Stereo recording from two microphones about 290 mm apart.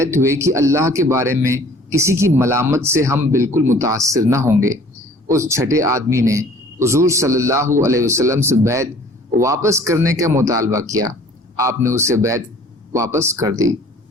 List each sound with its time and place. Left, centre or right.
0.0 s speech: centre